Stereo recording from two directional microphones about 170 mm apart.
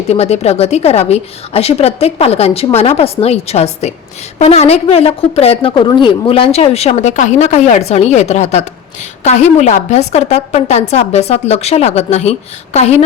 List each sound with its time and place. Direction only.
0.1 s a woman's voice: 40° left (ahead or behind)